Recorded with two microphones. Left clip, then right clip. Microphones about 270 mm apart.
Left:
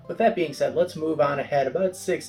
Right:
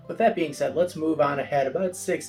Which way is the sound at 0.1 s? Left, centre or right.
Centre.